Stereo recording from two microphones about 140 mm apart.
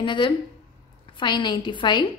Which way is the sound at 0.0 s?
35° left (ahead or behind).